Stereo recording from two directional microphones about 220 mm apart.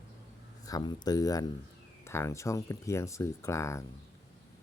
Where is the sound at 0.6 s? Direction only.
20° left (ahead or behind).